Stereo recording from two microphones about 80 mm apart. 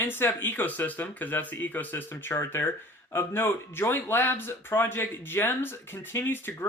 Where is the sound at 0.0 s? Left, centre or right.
Left.